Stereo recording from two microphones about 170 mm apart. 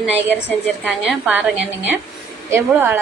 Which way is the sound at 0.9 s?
5° right (ahead or behind).